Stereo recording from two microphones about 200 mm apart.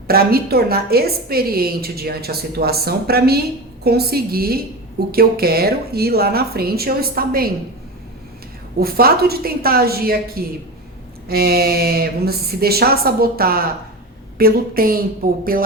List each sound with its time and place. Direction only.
0.1 s a woman's voice: 50° right (ahead or behind)
8.8 s a woman's voice: 50° right (ahead or behind)